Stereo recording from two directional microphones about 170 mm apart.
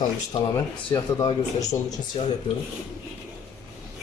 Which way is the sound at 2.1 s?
30° left (ahead or behind).